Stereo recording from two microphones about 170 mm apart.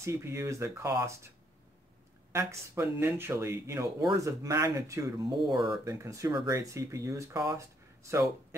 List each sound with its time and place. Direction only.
0.0 s speech: 15° right (ahead or behind)
2.3 s speech: 15° right (ahead or behind)